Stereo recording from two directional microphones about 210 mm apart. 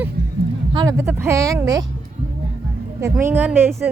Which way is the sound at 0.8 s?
15° right (ahead or behind).